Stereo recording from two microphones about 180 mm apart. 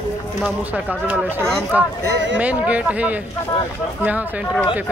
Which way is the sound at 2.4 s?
10° right (ahead or behind).